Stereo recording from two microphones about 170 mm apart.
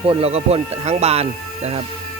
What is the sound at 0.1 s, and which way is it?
Speech, 35° right (ahead or behind).